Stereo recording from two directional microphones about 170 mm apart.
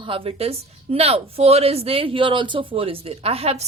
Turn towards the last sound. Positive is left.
turn(degrees=-35)  # may be behind; listen again after turning